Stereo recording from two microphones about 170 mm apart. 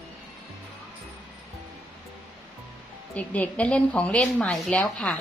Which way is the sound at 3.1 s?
10° left (ahead or behind).